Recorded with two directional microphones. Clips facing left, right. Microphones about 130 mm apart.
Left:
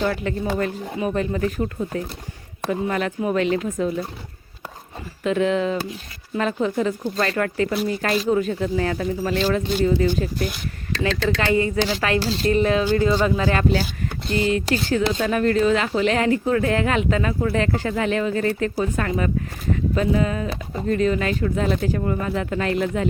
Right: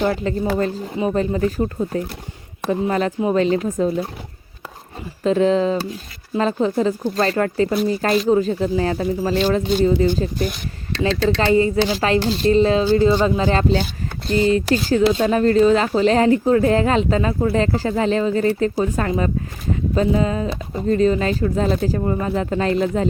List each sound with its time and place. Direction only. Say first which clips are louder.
0.0 s speech: right 3 dB; 25° right (ahead or behind)
5.2 s speech: right 4 dB; 35° right (ahead or behind)